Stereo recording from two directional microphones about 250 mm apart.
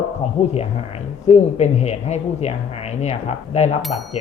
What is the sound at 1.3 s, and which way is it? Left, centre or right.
Speech, left.